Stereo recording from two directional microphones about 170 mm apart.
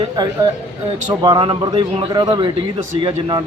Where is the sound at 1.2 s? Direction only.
25° right (ahead or behind).